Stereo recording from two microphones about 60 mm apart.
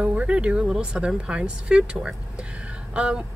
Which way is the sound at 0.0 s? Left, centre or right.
Right.